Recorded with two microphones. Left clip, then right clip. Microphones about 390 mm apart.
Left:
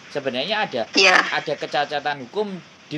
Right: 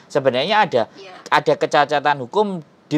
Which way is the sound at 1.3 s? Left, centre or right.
Right.